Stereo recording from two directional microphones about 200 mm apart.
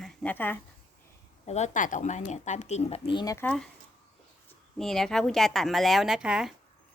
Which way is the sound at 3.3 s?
5° left (ahead or behind).